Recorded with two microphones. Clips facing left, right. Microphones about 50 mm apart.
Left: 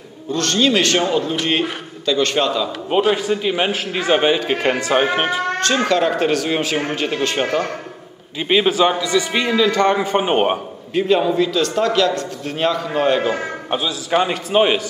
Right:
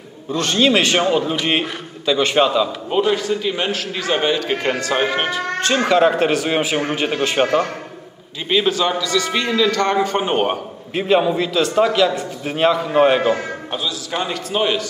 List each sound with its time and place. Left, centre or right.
0.3 s a man's voice: centre
2.9 s a man's voice: centre
5.9 s a man's voice: centre
8.5 s a man's voice: centre
10.9 s a man's voice: centre
13.7 s a man's voice: left